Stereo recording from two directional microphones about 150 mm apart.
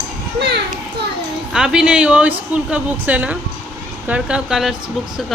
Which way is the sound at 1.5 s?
5° right (ahead or behind).